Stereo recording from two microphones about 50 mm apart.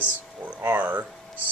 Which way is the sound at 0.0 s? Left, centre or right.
Right.